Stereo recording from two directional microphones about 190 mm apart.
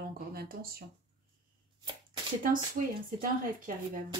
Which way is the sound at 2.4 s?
45° right (ahead or behind).